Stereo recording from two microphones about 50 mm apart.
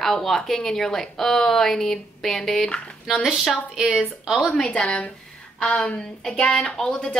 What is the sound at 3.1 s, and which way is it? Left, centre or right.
Speech, centre.